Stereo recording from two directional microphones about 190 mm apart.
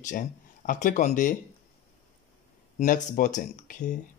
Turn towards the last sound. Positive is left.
turn(degrees=40)  # may be behind; listen again after turning